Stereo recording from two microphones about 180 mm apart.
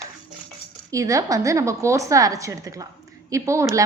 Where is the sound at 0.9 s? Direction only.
20° right (ahead or behind).